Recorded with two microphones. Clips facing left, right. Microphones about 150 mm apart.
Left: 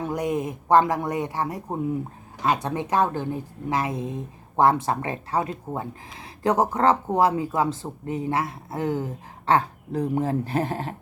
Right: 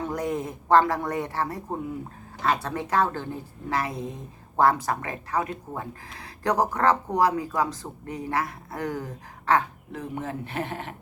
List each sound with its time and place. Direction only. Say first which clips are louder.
0.0 s a woman's voice: left 3 dB; 20° left (ahead or behind); by 10.9 s 35° left (ahead or behind)